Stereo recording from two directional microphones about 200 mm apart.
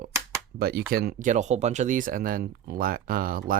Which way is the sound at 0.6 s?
50° right (ahead or behind).